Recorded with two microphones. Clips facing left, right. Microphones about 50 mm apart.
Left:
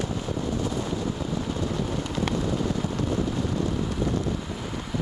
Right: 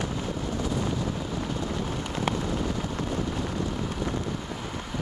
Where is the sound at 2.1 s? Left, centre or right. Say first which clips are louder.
Left 1 dB; centre.